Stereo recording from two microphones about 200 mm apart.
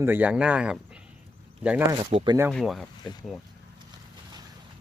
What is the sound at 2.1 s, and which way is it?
Speech, 25° right (ahead or behind).